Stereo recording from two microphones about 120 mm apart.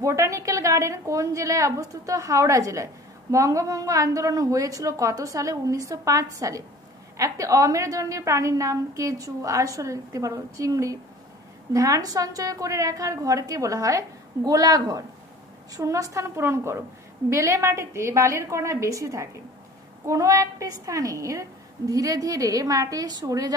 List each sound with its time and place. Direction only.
0.0 s a woman's voice: 25° right (ahead or behind)